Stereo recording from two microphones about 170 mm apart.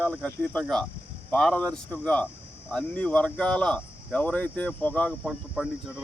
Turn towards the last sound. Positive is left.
turn(degrees=-5)  # may be behind; listen again after turning